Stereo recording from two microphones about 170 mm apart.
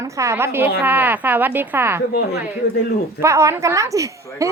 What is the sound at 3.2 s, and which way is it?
A woman's voice, 15° right (ahead or behind).